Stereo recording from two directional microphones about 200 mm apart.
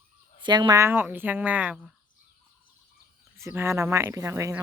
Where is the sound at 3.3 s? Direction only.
10° right (ahead or behind).